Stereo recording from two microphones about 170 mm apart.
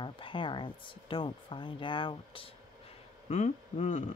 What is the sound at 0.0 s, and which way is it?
Speech, 30° left (ahead or behind).